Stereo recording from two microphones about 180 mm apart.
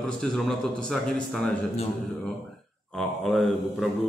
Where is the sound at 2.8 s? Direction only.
Centre (ahead or behind).